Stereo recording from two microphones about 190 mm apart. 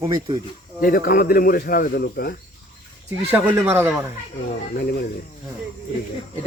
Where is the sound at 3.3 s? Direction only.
10° right (ahead or behind).